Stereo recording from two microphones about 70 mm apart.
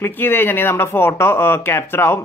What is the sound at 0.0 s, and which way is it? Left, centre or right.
Speech, left.